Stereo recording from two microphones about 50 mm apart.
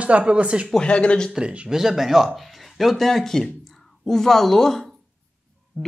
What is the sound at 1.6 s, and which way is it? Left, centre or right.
Speech, centre.